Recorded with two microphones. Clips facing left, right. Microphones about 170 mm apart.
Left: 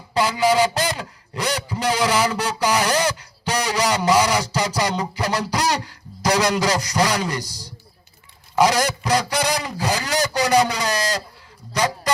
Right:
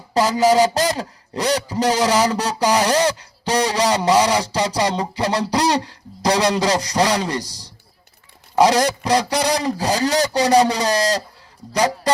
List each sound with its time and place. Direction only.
0.1 s speech: 40° right (ahead or behind)